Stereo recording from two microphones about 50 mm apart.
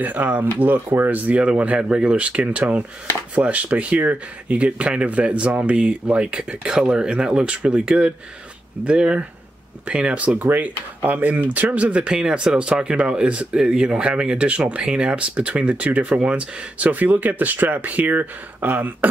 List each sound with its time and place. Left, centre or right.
0.0 s speech: right